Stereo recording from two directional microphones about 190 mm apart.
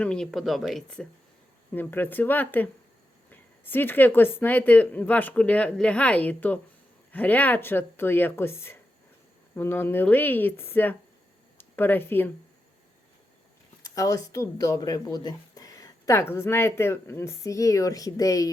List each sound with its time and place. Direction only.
0.0 s speech: 5° left (ahead or behind)
13.8 s speech: 15° left (ahead or behind)